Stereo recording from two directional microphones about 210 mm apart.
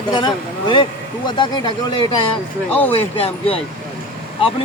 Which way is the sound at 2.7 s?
10° left (ahead or behind).